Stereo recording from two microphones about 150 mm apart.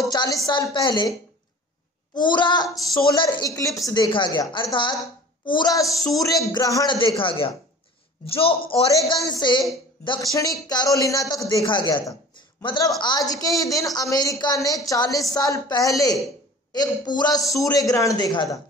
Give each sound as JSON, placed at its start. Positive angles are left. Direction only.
{"t": 0.0, "sound": "a sound", "side_deg": 25}
{"t": 0.5, "sound": "a woman's voice", "side_deg": 30}
{"t": 2.1, "sound": "a woman's voice", "side_deg": 30}